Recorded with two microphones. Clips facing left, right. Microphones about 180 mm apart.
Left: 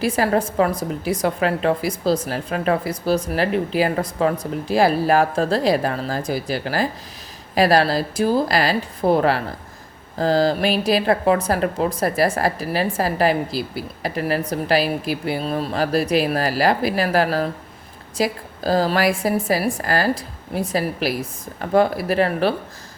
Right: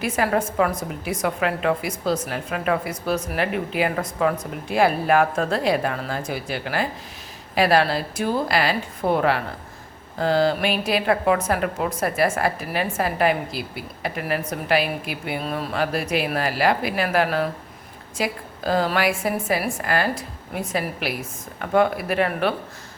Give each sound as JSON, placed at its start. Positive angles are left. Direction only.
{"t": 0.0, "sound": "a woman's voice", "side_deg": 35}